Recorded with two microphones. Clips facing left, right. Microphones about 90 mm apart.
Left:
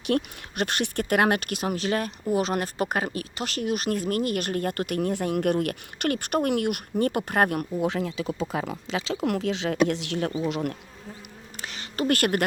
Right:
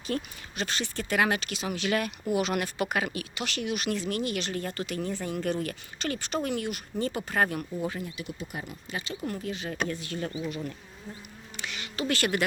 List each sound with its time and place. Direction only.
0.0 s speech: 65° left (ahead or behind)
7.8 s speech: 85° left
10.5 s bee: 70° left (ahead or behind)
11.5 s a sound: 40° left (ahead or behind)
12.0 s speech: 50° left (ahead or behind)